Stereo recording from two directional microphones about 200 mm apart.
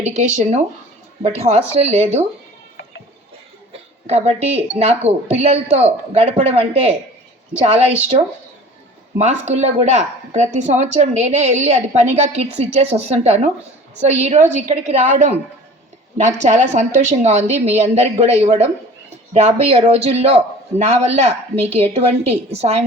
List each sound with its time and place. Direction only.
0.0 s a woman's voice: 35° right (ahead or behind)
3.7 s a woman's voice: 30° right (ahead or behind)
9.1 s a woman's voice: 35° right (ahead or behind)